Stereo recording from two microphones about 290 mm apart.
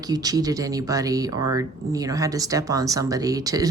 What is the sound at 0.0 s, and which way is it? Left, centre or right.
Speech, centre.